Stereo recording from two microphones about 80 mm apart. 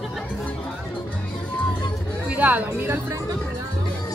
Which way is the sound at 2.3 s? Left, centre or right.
Right.